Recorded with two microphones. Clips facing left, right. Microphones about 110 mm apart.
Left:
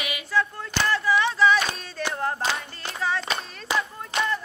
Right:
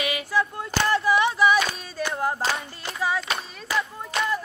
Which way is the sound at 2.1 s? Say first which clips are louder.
Right 1 dB; 10° right (ahead or behind).